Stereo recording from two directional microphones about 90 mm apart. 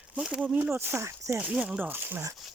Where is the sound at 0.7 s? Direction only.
25° right (ahead or behind).